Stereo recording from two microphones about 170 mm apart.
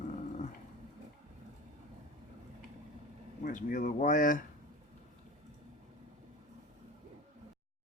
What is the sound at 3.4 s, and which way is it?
Speech, 50° left (ahead or behind).